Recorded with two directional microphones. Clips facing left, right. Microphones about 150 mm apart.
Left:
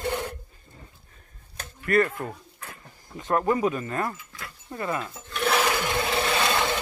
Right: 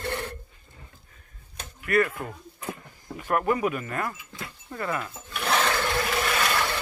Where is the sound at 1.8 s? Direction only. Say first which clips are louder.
Left 1 dB; 40° left (ahead or behind).